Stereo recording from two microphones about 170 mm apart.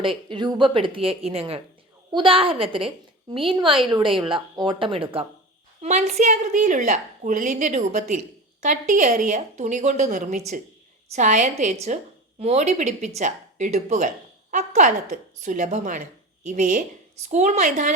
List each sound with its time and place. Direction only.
0.0 s a woman's voice: 30° right (ahead or behind)